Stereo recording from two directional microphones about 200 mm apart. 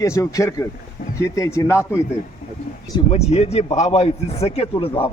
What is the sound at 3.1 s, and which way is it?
A man's voice, 30° left (ahead or behind).